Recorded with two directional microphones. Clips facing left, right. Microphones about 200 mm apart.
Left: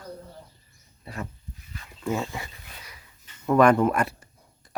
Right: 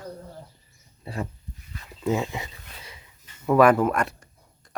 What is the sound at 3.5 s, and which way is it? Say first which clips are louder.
Speech: right 1 dB; 5° right (ahead or behind).